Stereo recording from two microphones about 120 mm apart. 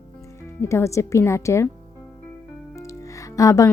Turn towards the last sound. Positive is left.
turn(degrees=30)  # may be behind; listen again after turning